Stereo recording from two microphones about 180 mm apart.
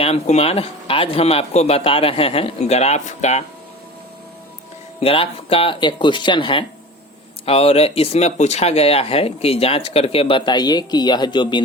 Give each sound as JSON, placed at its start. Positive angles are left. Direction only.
{"t": 0.0, "sound": "speech", "side_deg": 35}
{"t": 4.9, "sound": "speech", "side_deg": 30}